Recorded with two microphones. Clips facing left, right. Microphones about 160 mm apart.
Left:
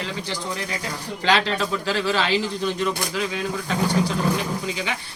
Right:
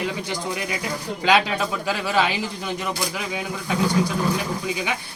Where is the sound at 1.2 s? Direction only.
10° right (ahead or behind).